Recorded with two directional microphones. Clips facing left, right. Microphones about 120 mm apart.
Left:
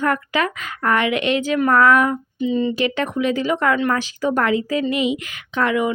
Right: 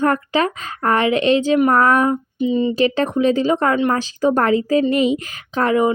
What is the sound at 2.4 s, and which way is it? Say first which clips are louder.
Speech: right 1 dB; 20° right (ahead or behind).